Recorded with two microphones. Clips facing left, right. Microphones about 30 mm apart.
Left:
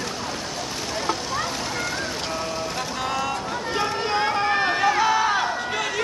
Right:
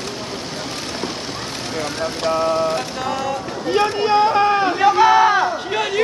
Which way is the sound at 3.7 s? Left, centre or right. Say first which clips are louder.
Right 9 dB; right.